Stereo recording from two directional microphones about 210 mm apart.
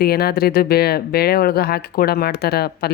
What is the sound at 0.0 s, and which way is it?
Speech, 45° left (ahead or behind).